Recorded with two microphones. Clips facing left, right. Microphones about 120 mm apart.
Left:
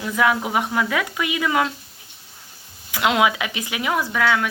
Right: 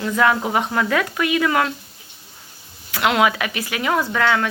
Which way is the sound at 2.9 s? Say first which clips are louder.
Right 1 dB; 15° left (ahead or behind).